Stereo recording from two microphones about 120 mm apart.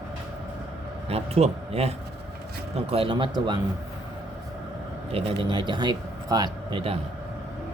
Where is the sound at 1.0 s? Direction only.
55° right (ahead or behind).